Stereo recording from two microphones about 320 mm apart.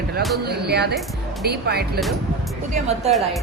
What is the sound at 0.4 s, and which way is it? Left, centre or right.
Speech, right.